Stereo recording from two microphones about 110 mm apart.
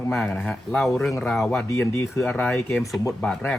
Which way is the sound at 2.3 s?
10° left (ahead or behind).